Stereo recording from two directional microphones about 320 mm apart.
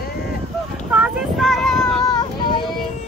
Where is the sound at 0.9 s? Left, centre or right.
Centre.